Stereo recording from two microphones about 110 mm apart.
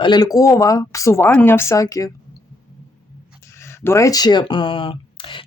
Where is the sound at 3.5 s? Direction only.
25° left (ahead or behind); by 5.4 s 50° left (ahead or behind).